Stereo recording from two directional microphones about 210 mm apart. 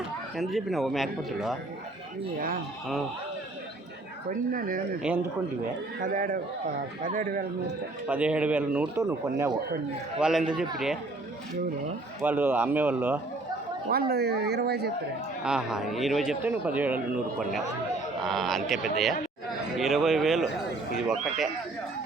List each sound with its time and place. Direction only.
0.3 s a man's voice: centre (ahead or behind)
4.3 s speech: 40° right (ahead or behind)
6.0 s a man's voice: 40° right (ahead or behind)
8.0 s speech: 5° right (ahead or behind)
10.2 s a man's voice: 5° right (ahead or behind)
12.2 s speech: 10° right (ahead or behind)
14.1 s speech: 50° right (ahead or behind)
15.4 s a man's voice: 5° right (ahead or behind)
18.3 s a man's voice: centre (ahead or behind)